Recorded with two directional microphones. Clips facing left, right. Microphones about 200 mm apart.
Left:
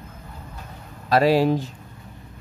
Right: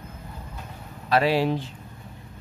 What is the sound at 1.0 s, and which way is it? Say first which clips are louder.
Speech: left 4 dB; 40° left (ahead or behind).